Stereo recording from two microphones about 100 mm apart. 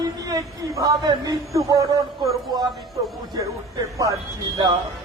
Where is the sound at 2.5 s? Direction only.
40° right (ahead or behind).